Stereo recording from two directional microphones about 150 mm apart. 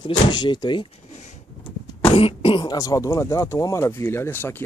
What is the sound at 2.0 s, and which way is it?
Speech, 40° left (ahead or behind).